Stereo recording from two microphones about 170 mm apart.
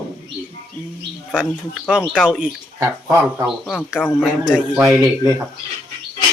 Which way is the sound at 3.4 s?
5° left (ahead or behind).